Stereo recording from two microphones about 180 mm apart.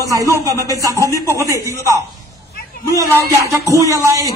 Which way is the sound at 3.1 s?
15° right (ahead or behind).